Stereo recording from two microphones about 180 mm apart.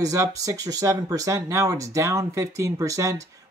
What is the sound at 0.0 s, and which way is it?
Speech, 20° right (ahead or behind).